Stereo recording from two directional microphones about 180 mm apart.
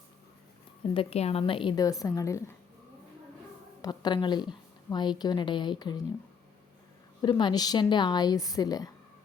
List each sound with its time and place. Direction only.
0.9 s a woman's voice: 35° left (ahead or behind); by 2.4 s 20° left (ahead or behind)
3.8 s a woman's voice: 20° left (ahead or behind)
7.2 s a woman's voice: 25° left (ahead or behind)